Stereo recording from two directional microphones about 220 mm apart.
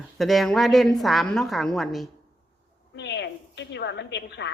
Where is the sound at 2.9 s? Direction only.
50° left (ahead or behind).